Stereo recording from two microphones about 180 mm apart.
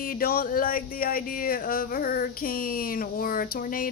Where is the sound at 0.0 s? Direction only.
55° left (ahead or behind).